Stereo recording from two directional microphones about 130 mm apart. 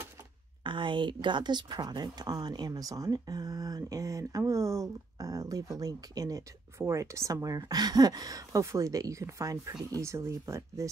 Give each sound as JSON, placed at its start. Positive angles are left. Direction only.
{"t": 0.7, "sound": "speech", "side_deg": -40}